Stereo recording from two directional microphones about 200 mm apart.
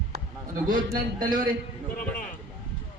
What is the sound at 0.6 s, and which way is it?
Speech, 40° right (ahead or behind).